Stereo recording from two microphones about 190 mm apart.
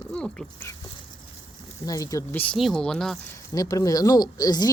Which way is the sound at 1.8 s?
15° left (ahead or behind).